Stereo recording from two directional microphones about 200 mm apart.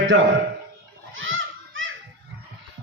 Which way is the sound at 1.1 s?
75° right (ahead or behind).